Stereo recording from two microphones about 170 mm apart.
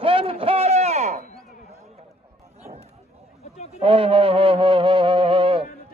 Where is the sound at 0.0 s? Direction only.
30° right (ahead or behind); by 1.4 s 50° right (ahead or behind).